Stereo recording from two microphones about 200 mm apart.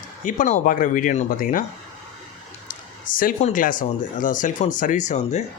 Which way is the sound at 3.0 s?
45° left (ahead or behind).